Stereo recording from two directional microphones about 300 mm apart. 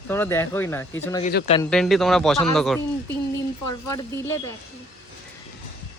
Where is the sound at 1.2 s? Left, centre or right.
Left.